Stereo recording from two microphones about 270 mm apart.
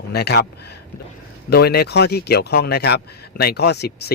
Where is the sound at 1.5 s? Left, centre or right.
Left.